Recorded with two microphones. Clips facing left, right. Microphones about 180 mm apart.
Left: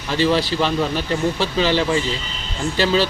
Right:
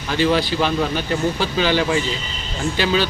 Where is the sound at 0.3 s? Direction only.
Centre (ahead or behind).